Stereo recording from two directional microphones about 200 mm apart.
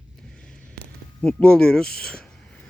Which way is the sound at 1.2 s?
5° left (ahead or behind).